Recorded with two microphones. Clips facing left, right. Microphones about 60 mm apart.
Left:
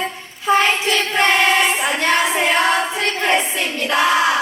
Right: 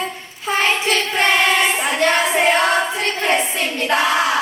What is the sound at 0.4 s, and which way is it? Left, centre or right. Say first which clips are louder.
Child singing: left 2 dB; left.